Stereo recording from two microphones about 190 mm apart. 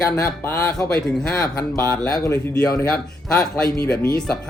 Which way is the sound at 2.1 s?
15° left (ahead or behind).